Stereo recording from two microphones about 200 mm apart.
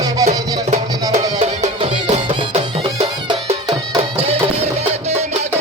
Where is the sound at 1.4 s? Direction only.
30° right (ahead or behind).